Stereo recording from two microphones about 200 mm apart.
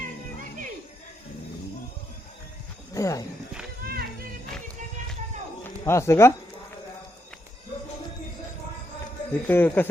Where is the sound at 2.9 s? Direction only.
15° left (ahead or behind).